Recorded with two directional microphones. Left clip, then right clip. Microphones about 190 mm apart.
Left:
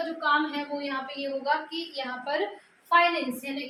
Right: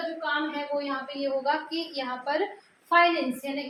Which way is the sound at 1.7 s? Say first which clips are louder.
Right 2 dB; 25° right (ahead or behind).